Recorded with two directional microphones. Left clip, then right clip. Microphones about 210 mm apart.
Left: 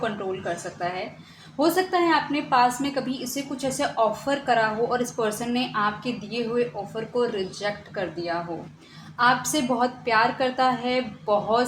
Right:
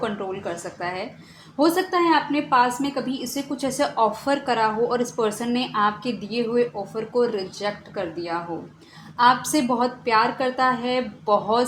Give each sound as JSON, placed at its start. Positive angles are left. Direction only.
{"t": 0.0, "sound": "a woman's voice", "side_deg": -30}